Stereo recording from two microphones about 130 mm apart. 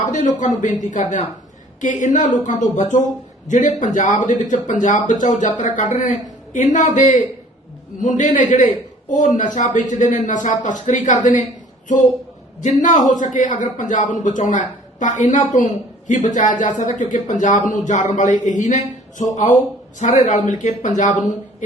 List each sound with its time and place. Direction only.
0.0 s speech: 65° left (ahead or behind)
12.6 s speech: 70° left (ahead or behind)